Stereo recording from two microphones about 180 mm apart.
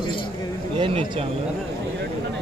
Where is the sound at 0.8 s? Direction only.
30° right (ahead or behind).